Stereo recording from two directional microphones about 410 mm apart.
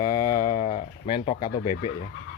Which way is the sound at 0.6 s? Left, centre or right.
Centre.